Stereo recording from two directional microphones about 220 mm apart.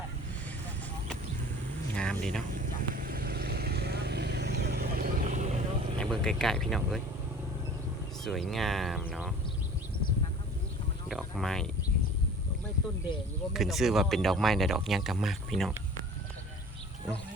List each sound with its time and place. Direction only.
2.0 s vehicle: 5° left (ahead or behind)
2.6 s vehicle: 40° right (ahead or behind)
6.0 s speech: 5° left (ahead or behind)
8.2 s speech: centre (ahead or behind)
11.1 s speech: centre (ahead or behind)
13.5 s speech: centre (ahead or behind)